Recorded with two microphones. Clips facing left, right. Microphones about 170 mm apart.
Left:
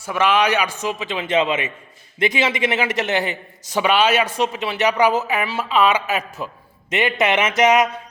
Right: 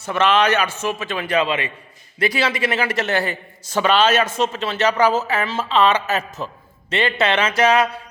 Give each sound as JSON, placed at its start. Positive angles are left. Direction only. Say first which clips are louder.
{"t": 0.0, "sound": "a man's voice", "louder": "right 1 dB", "side_deg": 10}